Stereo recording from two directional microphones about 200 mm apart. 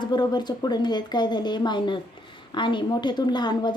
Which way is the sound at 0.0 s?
20° left (ahead or behind).